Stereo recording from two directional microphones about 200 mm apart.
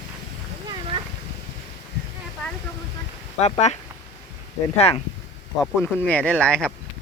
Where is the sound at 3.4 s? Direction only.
35° left (ahead or behind).